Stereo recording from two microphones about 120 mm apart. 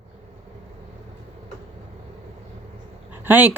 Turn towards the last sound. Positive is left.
turn(degrees=-15)  # may be behind; listen again after turning